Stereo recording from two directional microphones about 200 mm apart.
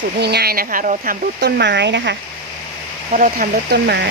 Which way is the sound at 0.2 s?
55° right (ahead or behind).